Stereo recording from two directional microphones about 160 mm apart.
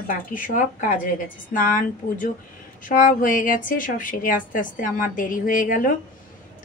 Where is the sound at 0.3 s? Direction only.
55° left (ahead or behind).